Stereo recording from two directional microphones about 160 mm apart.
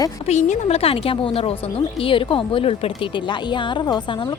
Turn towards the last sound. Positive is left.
turn(degrees=30)  # may be behind; listen again after turning